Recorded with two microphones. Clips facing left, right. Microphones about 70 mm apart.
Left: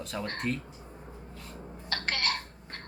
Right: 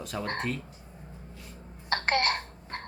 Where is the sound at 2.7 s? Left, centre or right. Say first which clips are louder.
Right 7 dB; right.